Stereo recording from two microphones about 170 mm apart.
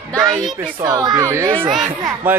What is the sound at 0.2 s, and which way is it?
A child's voice, 20° right (ahead or behind).